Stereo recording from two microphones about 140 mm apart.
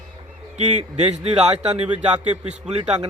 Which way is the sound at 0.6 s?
55° right (ahead or behind).